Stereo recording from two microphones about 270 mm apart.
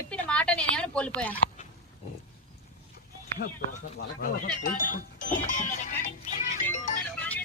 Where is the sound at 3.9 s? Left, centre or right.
Left.